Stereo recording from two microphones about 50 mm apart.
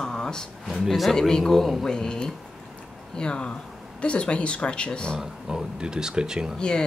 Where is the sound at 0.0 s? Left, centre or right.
Centre.